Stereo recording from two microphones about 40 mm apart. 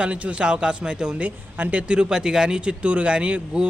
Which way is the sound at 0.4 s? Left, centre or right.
Right.